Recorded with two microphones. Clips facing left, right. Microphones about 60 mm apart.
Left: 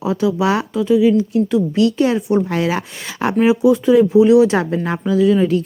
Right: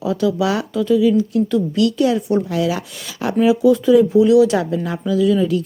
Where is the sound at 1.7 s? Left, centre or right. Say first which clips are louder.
Even; left.